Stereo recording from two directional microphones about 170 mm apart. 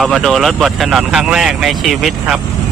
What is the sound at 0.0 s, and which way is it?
Speech, centre (ahead or behind).